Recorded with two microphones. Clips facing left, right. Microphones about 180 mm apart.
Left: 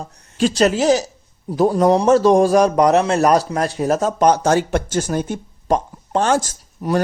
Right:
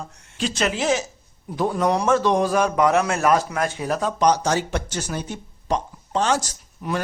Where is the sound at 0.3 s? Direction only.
40° left (ahead or behind).